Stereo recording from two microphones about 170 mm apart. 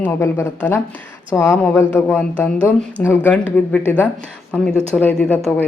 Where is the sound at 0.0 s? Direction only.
15° left (ahead or behind).